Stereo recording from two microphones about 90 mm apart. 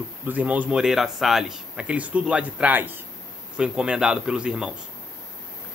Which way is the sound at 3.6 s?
10° right (ahead or behind).